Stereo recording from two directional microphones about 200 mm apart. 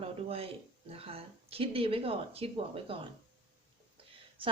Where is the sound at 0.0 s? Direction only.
30° right (ahead or behind).